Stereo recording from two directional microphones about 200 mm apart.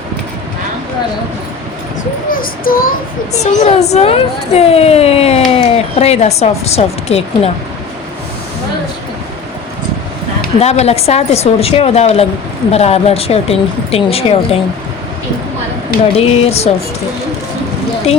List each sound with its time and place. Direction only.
2.3 s child singing: 45° left (ahead or behind)
3.3 s a woman's voice: 35° left (ahead or behind)
10.6 s a woman's voice: 35° left (ahead or behind)
16.1 s a woman's voice: 30° left (ahead or behind)